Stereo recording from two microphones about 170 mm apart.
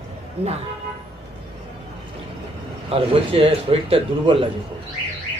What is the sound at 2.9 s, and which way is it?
A woman's voice, 35° right (ahead or behind).